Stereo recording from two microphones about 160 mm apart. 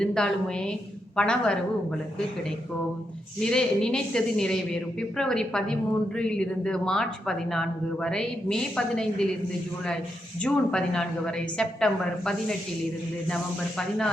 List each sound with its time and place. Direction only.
0.0 s a woman's voice: 5° left (ahead or behind)
3.4 s speech: 5° left (ahead or behind)
10.4 s speech: 5° left (ahead or behind)